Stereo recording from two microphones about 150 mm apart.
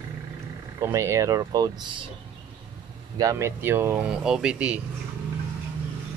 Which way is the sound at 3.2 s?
20° right (ahead or behind).